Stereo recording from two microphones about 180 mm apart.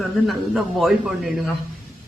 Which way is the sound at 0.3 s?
Centre (ahead or behind).